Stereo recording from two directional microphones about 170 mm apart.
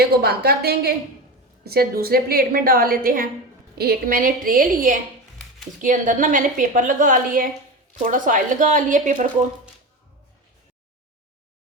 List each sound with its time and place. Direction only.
0.0 s a woman's voice: 70° right (ahead or behind); by 9.2 s 50° right (ahead or behind)